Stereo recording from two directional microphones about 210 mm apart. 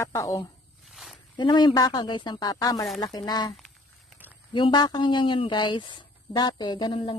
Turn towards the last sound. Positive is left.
turn(degrees=20)  # may be behind; listen again after turning